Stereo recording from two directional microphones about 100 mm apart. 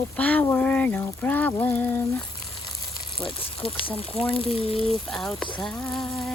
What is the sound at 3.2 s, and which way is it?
Speech, 65° left (ahead or behind).